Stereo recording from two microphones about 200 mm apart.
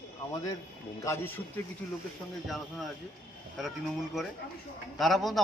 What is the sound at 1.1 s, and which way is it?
Speech, 10° left (ahead or behind).